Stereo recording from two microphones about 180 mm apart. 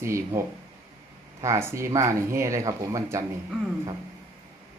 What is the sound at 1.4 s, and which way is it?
Speech, 15° right (ahead or behind).